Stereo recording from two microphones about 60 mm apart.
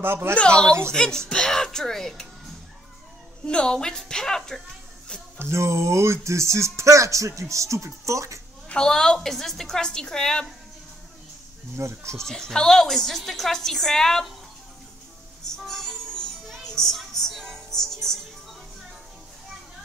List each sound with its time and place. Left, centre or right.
0.0 s speech: right
0.4 s a woman's voice: centre
3.4 s a woman's voice: centre
5.4 s speech: right
8.6 s a woman's voice: centre
11.7 s speech: right
12.2 s a woman's voice: centre
15.5 s music: centre